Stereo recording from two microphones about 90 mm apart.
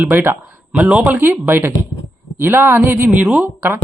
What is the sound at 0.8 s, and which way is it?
Speech, 15° right (ahead or behind).